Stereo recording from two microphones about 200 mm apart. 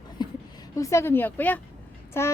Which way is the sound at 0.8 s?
15° left (ahead or behind).